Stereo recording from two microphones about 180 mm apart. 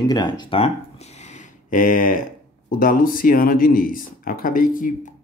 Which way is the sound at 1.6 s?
50° left (ahead or behind).